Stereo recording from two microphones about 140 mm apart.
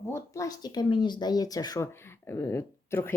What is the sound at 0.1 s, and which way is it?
Speech, 25° left (ahead or behind).